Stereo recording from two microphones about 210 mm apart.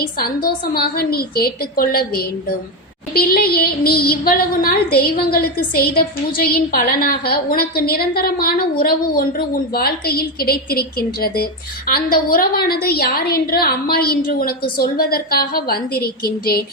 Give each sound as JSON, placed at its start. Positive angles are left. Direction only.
{"t": 0.0, "sound": "a woman's voice", "side_deg": 45}